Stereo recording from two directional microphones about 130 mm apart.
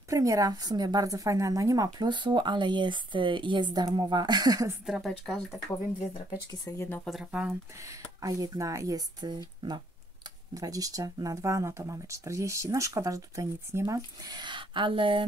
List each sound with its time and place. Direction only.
0.1 s a woman's voice: 25° right (ahead or behind)
4.8 s a woman's voice: centre (ahead or behind)
6.7 s speech: 25° left (ahead or behind)
7.1 s a woman's voice: 5° right (ahead or behind)
7.4 s speech: 25° right (ahead or behind)
10.5 s speech: 25° right (ahead or behind)